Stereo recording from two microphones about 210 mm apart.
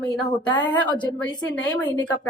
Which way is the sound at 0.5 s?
20° left (ahead or behind).